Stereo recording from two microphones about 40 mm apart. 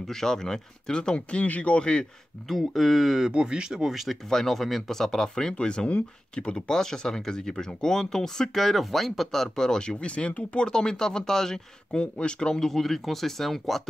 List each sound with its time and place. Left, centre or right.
0.0 s speech: centre; by 2.0 s left
2.4 s speech: centre
3.3 s speech: right; by 4.2 s centre
4.3 s speech: centre; by 6.6 s left
6.7 s speech: centre
8.5 s speech: centre; by 10.7 s left
10.7 s speech: centre
11.9 s speech: left
12.5 s speech: centre